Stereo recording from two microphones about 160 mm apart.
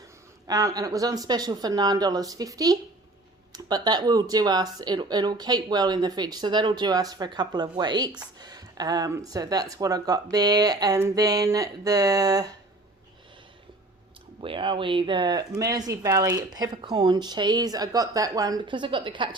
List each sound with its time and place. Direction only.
0.4 s speech: 25° right (ahead or behind)
14.4 s speech: 30° right (ahead or behind)